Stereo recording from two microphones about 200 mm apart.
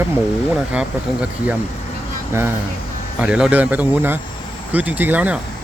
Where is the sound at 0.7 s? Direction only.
5° right (ahead or behind).